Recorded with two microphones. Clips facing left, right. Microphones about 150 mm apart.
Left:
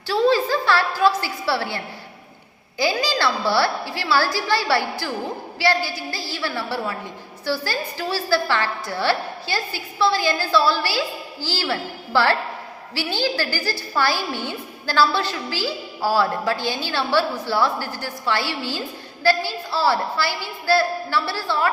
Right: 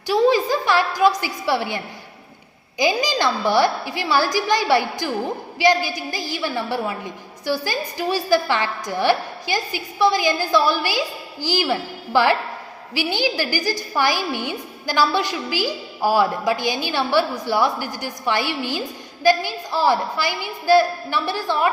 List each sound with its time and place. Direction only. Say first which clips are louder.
0.1 s a woman's voice: right 1 dB; 15° right (ahead or behind)